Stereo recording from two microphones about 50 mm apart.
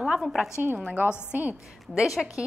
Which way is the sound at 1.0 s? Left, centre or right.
Right.